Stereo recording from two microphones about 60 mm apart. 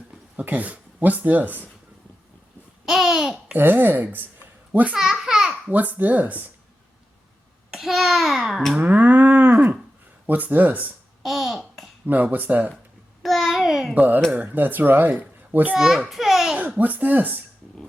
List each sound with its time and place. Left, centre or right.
0.3 s speech: right
2.8 s babbling: centre
3.5 s a woman's voice: right
5.2 s babbling: centre
5.7 s speech: right
7.7 s a child's voice: centre
8.8 s cattle: right
10.2 s speech: right
11.2 s babbling: centre
12.0 s speech: right
13.2 s a sound: centre
13.9 s a woman's voice: right
15.7 s a child's voice: centre
16.6 s speech: right